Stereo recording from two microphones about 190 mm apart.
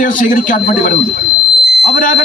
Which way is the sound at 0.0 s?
45° left (ahead or behind).